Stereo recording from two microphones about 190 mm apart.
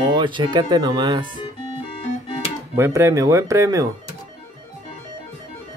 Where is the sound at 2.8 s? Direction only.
15° right (ahead or behind).